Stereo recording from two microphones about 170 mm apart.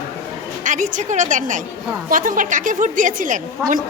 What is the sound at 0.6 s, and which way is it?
A woman's voice, 50° right (ahead or behind).